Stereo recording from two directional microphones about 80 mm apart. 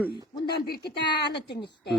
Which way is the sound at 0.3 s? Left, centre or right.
Left.